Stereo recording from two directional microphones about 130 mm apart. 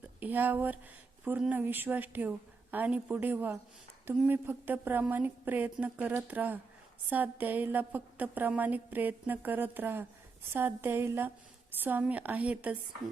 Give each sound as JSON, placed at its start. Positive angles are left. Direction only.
{"t": 0.2, "sound": "a woman's voice", "side_deg": -15}